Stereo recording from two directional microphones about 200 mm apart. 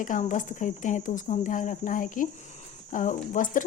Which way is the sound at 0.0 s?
40° left (ahead or behind).